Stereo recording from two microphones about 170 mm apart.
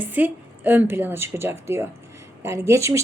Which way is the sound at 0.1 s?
10° right (ahead or behind).